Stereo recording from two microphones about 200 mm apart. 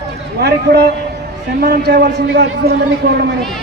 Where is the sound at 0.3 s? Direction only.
55° right (ahead or behind).